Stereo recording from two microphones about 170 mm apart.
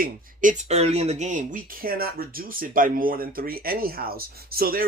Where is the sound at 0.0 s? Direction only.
45° right (ahead or behind).